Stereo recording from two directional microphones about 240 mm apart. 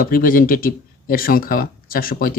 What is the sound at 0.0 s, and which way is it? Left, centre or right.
Speech, left.